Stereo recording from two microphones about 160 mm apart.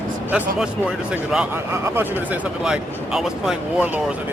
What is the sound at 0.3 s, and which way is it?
Speech, 10° right (ahead or behind).